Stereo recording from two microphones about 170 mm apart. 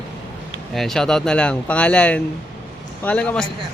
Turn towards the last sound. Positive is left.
turn(degrees=5)  # may be behind; listen again after turning